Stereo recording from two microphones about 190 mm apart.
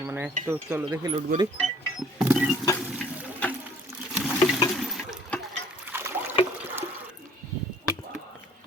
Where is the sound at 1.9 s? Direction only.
5° right (ahead or behind).